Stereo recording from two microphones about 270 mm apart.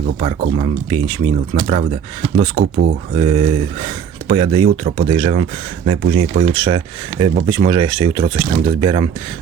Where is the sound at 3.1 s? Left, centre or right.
Right.